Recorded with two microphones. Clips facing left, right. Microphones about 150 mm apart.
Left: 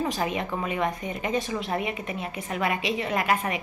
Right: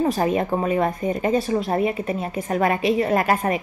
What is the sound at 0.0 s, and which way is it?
Speech, 40° right (ahead or behind).